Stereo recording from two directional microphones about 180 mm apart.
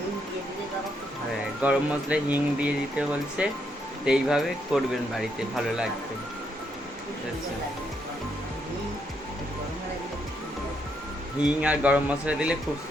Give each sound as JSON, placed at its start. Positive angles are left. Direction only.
{"t": 1.6, "sound": "speech", "side_deg": -5}
{"t": 11.4, "sound": "speech", "side_deg": -5}